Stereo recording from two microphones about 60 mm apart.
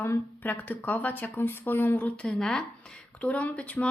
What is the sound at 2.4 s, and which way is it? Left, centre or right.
Speech, centre.